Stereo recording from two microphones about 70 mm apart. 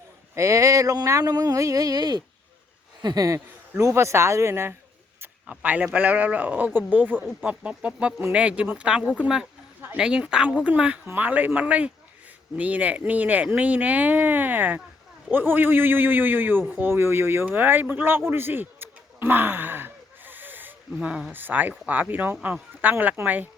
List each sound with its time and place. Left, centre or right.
0.3 s speech: right
3.2 s speech: right
5.5 s speech: right
11.0 s speech: right
18.3 s a sound: right
21.0 s speech: centre
21.3 s speech: right